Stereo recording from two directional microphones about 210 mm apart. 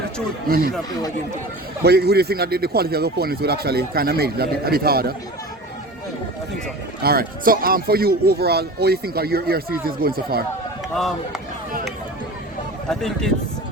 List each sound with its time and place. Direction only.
0.4 s speech: 45° right (ahead or behind)
1.8 s speech: 50° right (ahead or behind)
7.0 s speech: 45° right (ahead or behind)
10.9 s speech: centre (ahead or behind)
12.9 s speech: centre (ahead or behind)